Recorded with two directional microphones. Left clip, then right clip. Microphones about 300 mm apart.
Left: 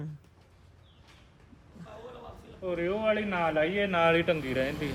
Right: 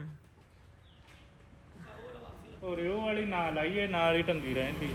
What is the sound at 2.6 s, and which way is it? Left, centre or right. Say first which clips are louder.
A man's voice: left 5 dB; left.